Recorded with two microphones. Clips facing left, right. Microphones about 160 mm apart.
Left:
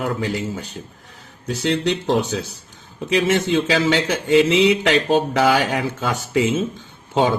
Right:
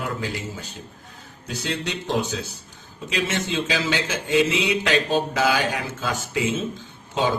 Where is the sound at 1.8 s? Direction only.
60° left (ahead or behind).